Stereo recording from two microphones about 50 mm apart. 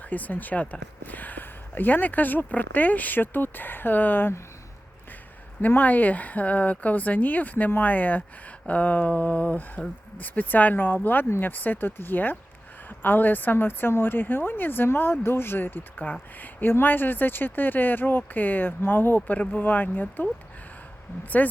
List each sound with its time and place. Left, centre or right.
0.0 s speech: left
5.6 s a woman's voice: left
21.4 s speech: left